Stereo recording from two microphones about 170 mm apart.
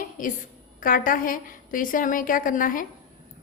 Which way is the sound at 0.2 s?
50° left (ahead or behind).